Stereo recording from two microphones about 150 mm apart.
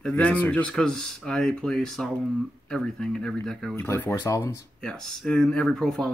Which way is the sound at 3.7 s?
15° left (ahead or behind).